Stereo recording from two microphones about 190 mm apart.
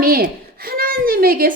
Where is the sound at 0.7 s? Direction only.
50° right (ahead or behind).